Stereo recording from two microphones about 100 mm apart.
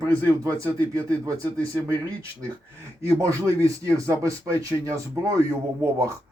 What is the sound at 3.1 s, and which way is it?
Speech, 30° right (ahead or behind).